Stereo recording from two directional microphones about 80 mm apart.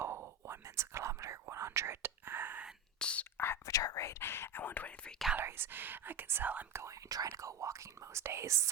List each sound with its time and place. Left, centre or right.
0.0 s whispering: right
3.0 s whispering: centre
3.3 s whispering: left
3.7 s speech: left; by 5.1 s centre
5.4 s speech: right
6.7 s speech: right